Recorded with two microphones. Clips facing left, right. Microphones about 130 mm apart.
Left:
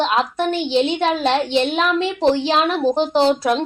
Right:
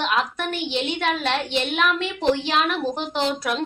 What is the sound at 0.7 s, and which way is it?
A woman's voice, 30° left (ahead or behind).